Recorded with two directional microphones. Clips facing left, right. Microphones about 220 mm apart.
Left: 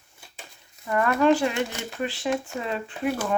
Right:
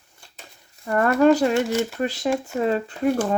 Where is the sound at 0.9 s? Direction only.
45° right (ahead or behind).